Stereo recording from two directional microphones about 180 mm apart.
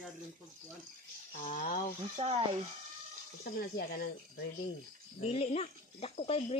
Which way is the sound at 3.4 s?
55° left (ahead or behind).